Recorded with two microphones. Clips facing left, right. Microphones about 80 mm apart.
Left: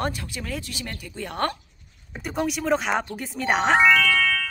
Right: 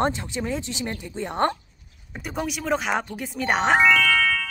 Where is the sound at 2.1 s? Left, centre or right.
Centre.